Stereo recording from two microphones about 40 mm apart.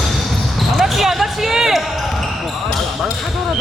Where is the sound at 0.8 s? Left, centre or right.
Centre.